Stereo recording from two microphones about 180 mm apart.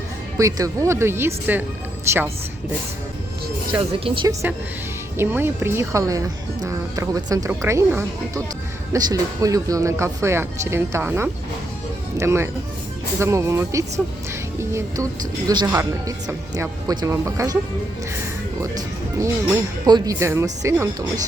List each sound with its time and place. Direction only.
0.3 s speech: 20° right (ahead or behind)
4.0 s speech: 25° right (ahead or behind)
5.1 s speech: 15° right (ahead or behind)
19.2 s speech: 20° right (ahead or behind)